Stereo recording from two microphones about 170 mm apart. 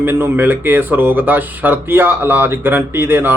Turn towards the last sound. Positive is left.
turn(degrees=-15)  # may be behind; listen again after turning